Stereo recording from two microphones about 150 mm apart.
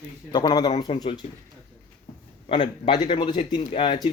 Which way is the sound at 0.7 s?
40° left (ahead or behind).